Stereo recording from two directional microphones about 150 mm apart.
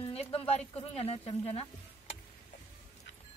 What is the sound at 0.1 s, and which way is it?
Speech, 40° left (ahead or behind).